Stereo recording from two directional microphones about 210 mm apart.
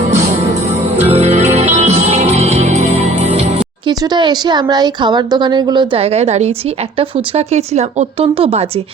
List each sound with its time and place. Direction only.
0.9 s music: 30° right (ahead or behind)
3.8 s speech: 20° right (ahead or behind)